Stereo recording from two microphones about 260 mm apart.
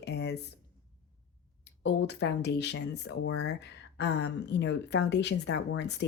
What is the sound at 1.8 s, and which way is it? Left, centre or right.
Speech, left.